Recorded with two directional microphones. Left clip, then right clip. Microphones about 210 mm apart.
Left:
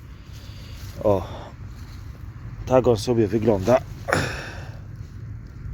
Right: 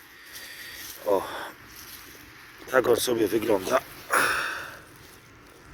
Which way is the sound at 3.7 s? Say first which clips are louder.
Left 2 dB; 10° left (ahead or behind).